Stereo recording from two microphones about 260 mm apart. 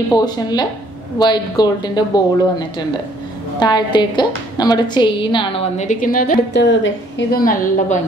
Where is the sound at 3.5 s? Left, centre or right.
Centre.